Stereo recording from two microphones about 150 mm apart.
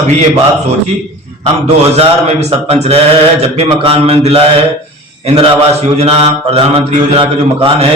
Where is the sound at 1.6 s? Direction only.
45° right (ahead or behind).